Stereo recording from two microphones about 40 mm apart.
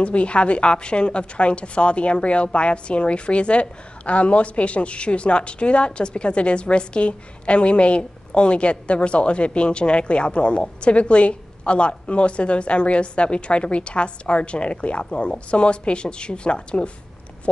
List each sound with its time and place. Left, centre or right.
0.0 s speech: left